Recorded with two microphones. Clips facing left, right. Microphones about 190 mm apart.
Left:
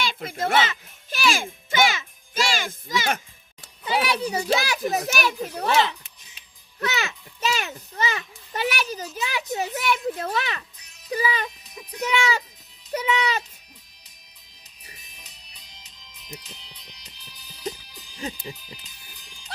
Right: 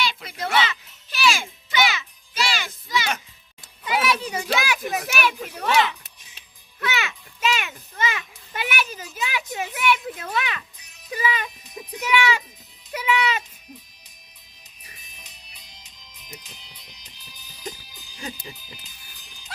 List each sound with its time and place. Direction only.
0.0 s music: 50° left (ahead or behind)
3.8 s a child's voice: 30° left (ahead or behind)
12.9 s a child's voice: 35° left (ahead or behind)
15.0 s music: centre (ahead or behind)